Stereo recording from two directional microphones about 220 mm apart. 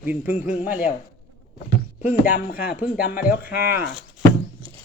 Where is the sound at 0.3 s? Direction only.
35° left (ahead or behind).